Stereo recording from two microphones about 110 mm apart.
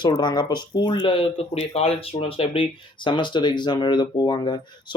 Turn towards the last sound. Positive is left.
turn(degrees=45)  # may be behind; listen again after turning